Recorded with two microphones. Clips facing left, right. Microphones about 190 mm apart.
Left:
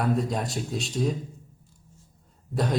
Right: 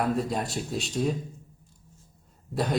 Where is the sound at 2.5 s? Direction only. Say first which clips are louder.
Left 1 dB; centre (ahead or behind).